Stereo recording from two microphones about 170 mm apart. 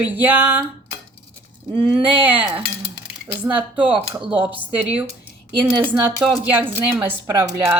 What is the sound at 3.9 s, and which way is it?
Speech, 30° right (ahead or behind).